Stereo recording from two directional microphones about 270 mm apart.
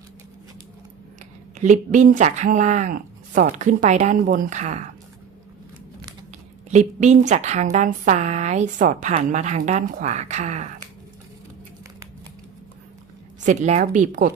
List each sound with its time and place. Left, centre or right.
1.5 s a woman's voice: right
6.7 s a woman's voice: right
13.4 s a woman's voice: right